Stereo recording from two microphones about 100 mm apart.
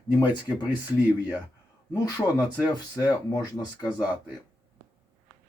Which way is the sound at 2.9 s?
40° left (ahead or behind).